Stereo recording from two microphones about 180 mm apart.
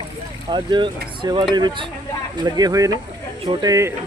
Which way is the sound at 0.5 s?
25° right (ahead or behind).